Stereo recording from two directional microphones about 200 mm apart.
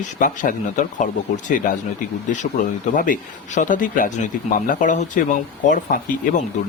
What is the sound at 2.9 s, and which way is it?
Speech, 40° left (ahead or behind).